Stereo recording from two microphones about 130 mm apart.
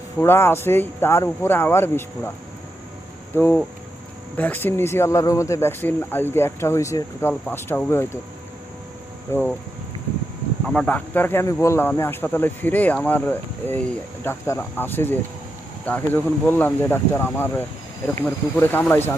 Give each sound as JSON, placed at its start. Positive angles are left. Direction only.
{"t": 0.2, "sound": "speech", "side_deg": 20}
{"t": 3.3, "sound": "speech", "side_deg": 15}
{"t": 9.3, "sound": "speech", "side_deg": 15}
{"t": 10.7, "sound": "speech", "side_deg": 10}